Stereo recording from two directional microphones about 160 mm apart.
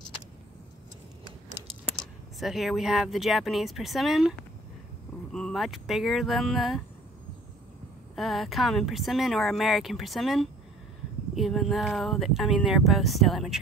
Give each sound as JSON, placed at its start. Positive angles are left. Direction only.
{"t": 2.0, "sound": "speech", "side_deg": 0}
{"t": 8.2, "sound": "speech", "side_deg": 0}